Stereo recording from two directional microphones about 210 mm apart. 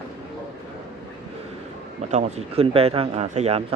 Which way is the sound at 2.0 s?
35° right (ahead or behind).